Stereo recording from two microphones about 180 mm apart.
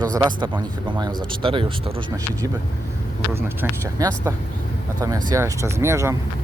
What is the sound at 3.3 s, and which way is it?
Speech, 15° right (ahead or behind).